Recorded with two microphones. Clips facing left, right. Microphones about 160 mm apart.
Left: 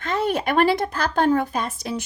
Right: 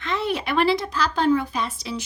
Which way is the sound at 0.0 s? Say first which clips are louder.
Left 3 dB; 45° left (ahead or behind).